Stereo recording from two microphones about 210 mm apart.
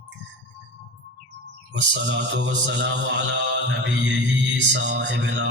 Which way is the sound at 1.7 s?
60° right (ahead or behind).